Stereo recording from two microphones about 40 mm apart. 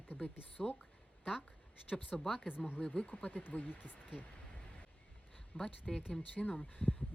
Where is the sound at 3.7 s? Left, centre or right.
Left.